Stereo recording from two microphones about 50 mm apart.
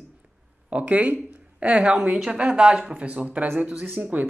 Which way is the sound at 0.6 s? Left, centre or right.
Right.